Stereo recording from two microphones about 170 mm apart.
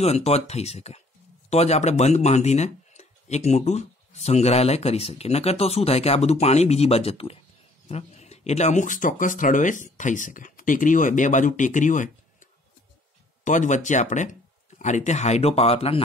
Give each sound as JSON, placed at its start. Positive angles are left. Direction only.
{"t": 0.0, "sound": "speech", "side_deg": 40}